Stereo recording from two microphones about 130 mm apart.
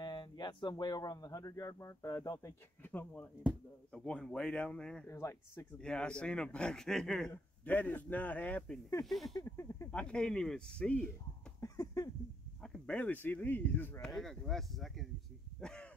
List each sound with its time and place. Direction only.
0.0 s speech: 35° left (ahead or behind)
2.9 s a man's voice: 10° left (ahead or behind)
5.0 s speech: 20° left (ahead or behind)
5.8 s a man's voice: 5° left (ahead or behind)
9.4 s speech: 25° left (ahead or behind)
9.8 s a man's voice: 10° left (ahead or behind)
11.6 s a sound: 25° left (ahead or behind)
12.6 s a man's voice: 5° left (ahead or behind)
14.1 s speech: 5° left (ahead or behind)
15.6 s a sound: 5° left (ahead or behind)